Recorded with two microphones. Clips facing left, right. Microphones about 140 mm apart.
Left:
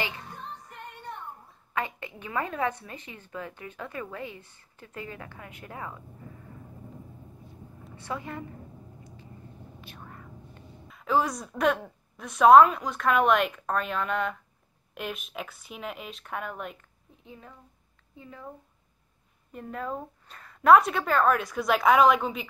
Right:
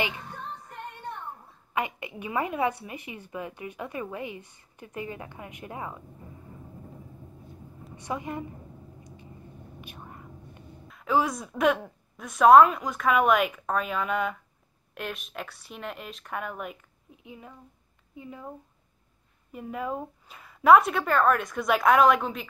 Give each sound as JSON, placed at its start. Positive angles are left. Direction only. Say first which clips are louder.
{"t": 1.7, "sound": "a woman's voice", "louder": "right 2 dB", "side_deg": -15}
{"t": 7.9, "sound": "a woman's voice", "louder": "right 3 dB", "side_deg": -15}
{"t": 9.0, "sound": "vehicle", "louder": "right 1 dB", "side_deg": -15}
{"t": 9.8, "sound": "whispering", "louder": "right 3 dB", "side_deg": -15}
{"t": 10.9, "sound": "a woman's voice", "louder": "right 1 dB", "side_deg": 0}
{"t": 19.5, "sound": "a woman's voice", "louder": "right 2 dB", "side_deg": -5}